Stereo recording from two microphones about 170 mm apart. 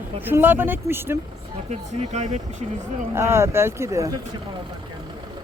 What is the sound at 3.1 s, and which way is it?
Speech, 15° right (ahead or behind).